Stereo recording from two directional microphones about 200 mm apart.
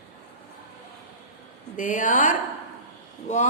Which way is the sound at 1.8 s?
40° left (ahead or behind).